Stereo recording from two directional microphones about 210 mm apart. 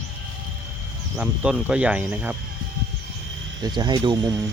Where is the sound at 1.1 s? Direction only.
5° right (ahead or behind).